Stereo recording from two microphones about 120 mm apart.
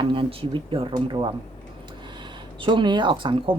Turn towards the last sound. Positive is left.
turn(degrees=-45)  # may be behind; listen again after turning